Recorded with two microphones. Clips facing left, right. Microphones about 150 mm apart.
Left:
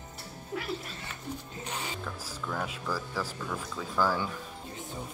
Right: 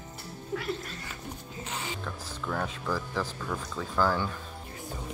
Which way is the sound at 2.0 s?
5° left (ahead or behind).